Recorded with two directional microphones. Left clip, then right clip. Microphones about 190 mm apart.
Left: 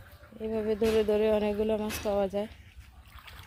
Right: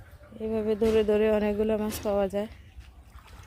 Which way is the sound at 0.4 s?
5° right (ahead or behind).